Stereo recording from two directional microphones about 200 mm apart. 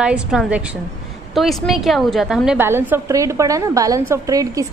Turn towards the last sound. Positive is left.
turn(degrees=-15)  # may be behind; listen again after turning